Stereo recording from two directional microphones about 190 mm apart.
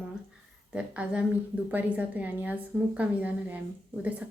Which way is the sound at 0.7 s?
5° right (ahead or behind).